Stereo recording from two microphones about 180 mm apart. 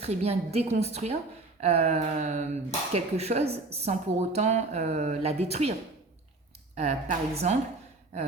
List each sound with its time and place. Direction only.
0.0 s speech: 35° right (ahead or behind)
6.7 s speech: 35° right (ahead or behind)